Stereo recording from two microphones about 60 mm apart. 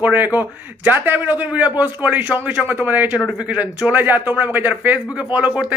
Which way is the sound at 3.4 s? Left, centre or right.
Centre.